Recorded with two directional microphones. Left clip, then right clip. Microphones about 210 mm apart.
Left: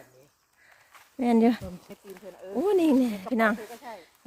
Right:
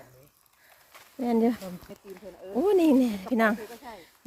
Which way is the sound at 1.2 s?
15° left (ahead or behind).